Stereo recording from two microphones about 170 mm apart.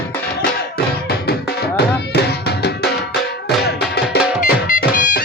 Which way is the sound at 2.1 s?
75° left (ahead or behind).